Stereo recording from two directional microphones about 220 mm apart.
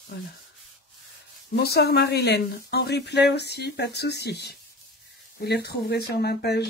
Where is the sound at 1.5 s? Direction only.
45° left (ahead or behind).